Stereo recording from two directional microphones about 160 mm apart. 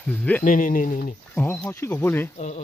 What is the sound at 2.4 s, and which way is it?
Speech, 45° left (ahead or behind).